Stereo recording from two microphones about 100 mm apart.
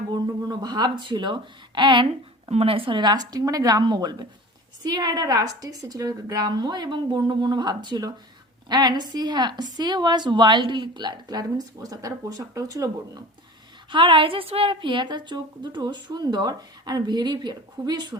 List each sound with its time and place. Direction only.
0.1 s a woman's voice: 45° right (ahead or behind); by 3.0 s 60° right (ahead or behind)
3.0 s a woman's voice: 40° right (ahead or behind)
13.9 s a woman's voice: 55° right (ahead or behind)